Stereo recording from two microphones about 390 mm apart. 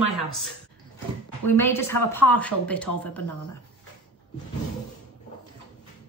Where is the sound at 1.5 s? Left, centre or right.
Centre.